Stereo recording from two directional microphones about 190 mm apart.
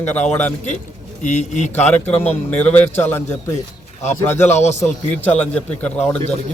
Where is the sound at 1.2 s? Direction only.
40° left (ahead or behind).